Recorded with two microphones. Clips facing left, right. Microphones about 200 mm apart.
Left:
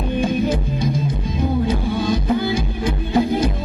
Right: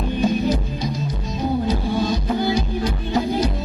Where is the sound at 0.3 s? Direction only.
50° left (ahead or behind).